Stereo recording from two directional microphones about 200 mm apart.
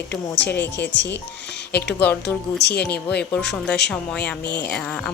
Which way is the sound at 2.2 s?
55° left (ahead or behind).